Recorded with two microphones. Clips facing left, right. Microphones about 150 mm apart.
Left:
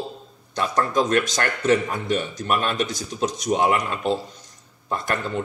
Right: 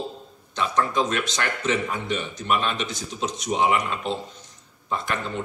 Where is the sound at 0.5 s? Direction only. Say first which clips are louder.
Left 2 dB; 45° left (ahead or behind).